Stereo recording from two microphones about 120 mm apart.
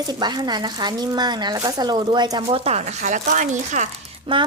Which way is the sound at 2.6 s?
65° right (ahead or behind).